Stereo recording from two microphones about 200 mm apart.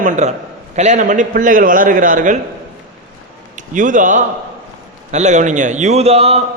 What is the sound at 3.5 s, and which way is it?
A man's voice, 40° right (ahead or behind).